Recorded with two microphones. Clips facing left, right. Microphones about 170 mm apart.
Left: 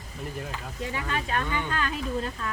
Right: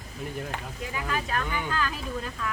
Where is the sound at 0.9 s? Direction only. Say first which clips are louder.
Even; 25° left (ahead or behind).